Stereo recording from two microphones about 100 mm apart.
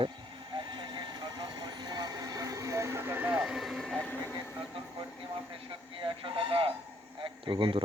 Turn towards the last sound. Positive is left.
turn(degrees=-60)  # may be behind; listen again after turning